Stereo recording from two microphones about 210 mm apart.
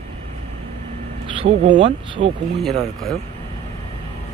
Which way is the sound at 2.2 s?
55° right (ahead or behind).